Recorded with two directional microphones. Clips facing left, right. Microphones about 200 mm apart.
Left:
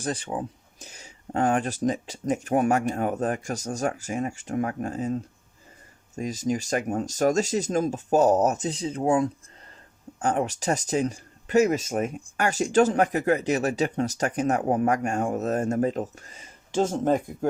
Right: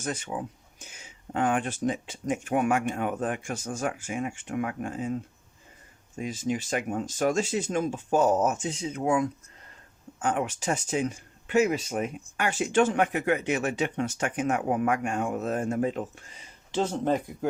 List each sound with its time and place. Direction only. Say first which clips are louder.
0.0 s speech: left 3 dB; 35° left (ahead or behind)
6.1 s speech: left 3 dB; 40° left (ahead or behind)